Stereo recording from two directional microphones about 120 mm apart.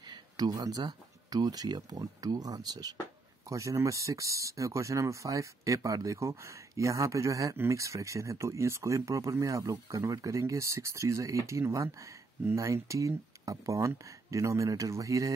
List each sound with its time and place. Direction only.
0.0 s speech: 35° right (ahead or behind)